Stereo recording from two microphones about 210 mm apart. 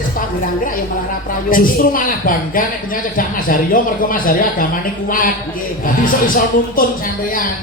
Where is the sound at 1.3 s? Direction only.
40° left (ahead or behind).